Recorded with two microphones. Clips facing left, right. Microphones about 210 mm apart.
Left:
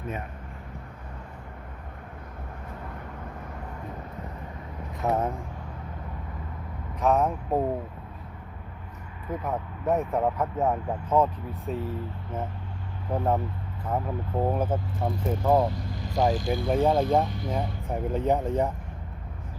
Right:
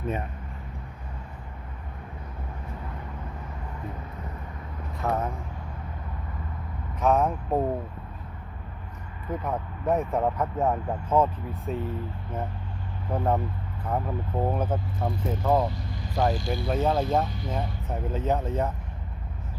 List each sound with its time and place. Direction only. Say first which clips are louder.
5.0 s speech: left 2 dB; 20° left (ahead or behind)
7.0 s speech: even; centre (ahead or behind)
9.3 s speech: even; centre (ahead or behind)
13.1 s speech: even; centre (ahead or behind)
16.4 s speech: left 2 dB; 50° left (ahead or behind)
16.7 s speech: left 2 dB; 10° left (ahead or behind)